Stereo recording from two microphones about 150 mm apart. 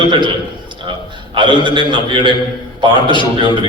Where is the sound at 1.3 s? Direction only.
30° right (ahead or behind).